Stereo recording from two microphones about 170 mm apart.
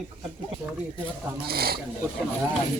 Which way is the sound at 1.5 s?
65° right (ahead or behind).